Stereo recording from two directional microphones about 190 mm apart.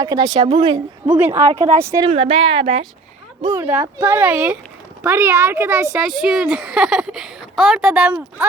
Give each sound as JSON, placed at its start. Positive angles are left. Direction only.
{"t": 0.0, "sound": "speech", "side_deg": -20}
{"t": 1.0, "sound": "a woman's voice", "side_deg": -10}
{"t": 3.5, "sound": "a woman's voice", "side_deg": -10}
{"t": 6.1, "sound": "speech", "side_deg": 0}